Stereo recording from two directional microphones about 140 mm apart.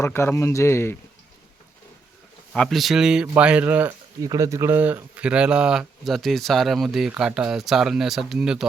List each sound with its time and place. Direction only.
0.0 s speech: 15° left (ahead or behind)
2.5 s speech: centre (ahead or behind)
4.2 s speech: 25° right (ahead or behind); by 8.6 s 5° right (ahead or behind)